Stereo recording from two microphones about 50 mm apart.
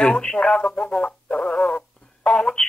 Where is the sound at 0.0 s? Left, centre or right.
Centre.